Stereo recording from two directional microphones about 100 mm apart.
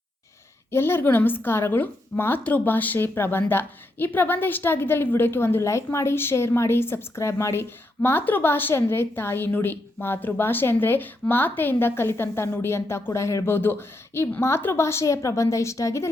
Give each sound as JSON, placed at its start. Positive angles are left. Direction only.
{"t": 0.7, "sound": "a woman's voice", "side_deg": 25}